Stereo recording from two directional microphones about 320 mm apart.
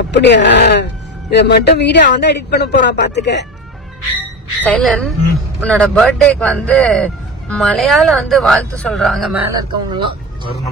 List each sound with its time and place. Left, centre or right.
0.1 s speech: left
4.6 s speech: centre
9.5 s speech: centre